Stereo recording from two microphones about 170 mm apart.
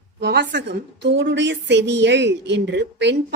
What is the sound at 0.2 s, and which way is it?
A woman's voice, 90° right.